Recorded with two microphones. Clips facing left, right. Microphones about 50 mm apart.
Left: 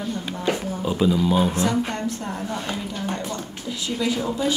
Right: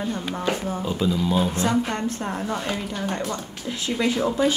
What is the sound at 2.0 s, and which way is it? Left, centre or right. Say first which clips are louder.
Speech: right 1 dB; right.